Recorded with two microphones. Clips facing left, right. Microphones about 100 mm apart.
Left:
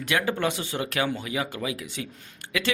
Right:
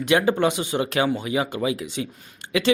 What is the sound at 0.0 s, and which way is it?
Speech, 20° right (ahead or behind).